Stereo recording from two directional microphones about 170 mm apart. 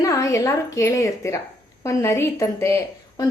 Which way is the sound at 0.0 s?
20° left (ahead or behind).